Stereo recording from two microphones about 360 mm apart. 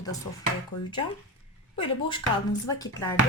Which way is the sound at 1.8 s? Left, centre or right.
Centre.